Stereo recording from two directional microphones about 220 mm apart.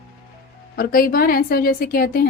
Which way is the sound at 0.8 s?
40° left (ahead or behind).